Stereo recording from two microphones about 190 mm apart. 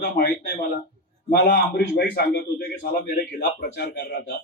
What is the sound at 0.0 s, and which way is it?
A man's voice, 55° left (ahead or behind).